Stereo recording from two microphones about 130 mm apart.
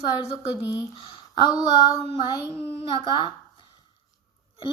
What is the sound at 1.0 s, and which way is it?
Speech, 35° left (ahead or behind).